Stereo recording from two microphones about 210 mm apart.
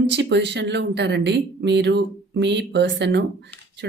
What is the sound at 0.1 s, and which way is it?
Speech, 55° right (ahead or behind).